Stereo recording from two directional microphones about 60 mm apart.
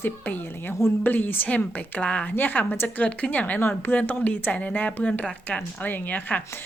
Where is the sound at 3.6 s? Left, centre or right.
Left.